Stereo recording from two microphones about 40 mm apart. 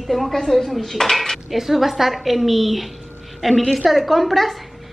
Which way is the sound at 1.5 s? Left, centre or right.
Centre.